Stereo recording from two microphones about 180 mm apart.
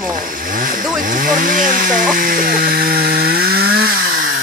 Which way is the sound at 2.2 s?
50° right (ahead or behind).